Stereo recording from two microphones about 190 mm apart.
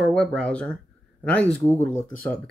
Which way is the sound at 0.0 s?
5° left (ahead or behind).